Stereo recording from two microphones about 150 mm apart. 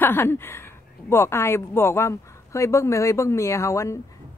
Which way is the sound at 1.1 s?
15° left (ahead or behind).